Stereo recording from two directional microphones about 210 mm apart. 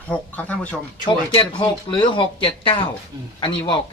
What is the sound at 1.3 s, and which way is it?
Speech, 20° left (ahead or behind).